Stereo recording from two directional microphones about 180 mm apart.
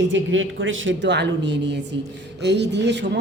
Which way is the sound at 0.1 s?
90° right.